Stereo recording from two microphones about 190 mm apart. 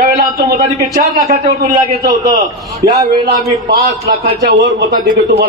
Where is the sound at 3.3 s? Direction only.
50° right (ahead or behind).